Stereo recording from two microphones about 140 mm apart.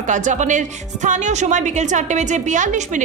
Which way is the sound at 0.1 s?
60° right (ahead or behind).